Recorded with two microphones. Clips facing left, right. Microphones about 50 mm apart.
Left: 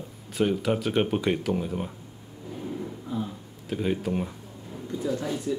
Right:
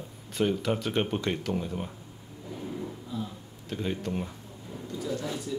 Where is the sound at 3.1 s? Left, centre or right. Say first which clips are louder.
Left 5 dB; left.